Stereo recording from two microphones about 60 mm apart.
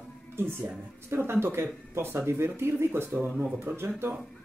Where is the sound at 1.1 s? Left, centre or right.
Right.